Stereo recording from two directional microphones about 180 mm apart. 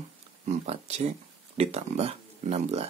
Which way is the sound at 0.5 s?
35° right (ahead or behind).